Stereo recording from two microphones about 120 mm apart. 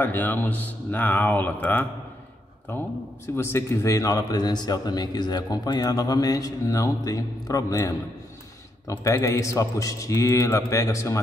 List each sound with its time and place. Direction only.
0.0 s a man's voice: 15° left (ahead or behind)
9.0 s a man's voice: 25° left (ahead or behind)